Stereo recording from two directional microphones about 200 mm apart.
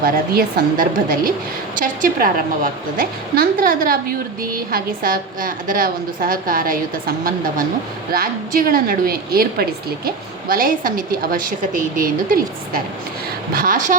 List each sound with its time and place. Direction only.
0.0 s a woman's voice: 45° right (ahead or behind)
8.1 s a woman's voice: 45° right (ahead or behind)